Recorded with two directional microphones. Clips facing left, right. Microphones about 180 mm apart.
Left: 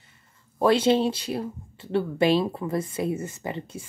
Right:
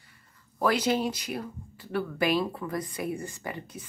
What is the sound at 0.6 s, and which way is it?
A woman's voice, 25° left (ahead or behind).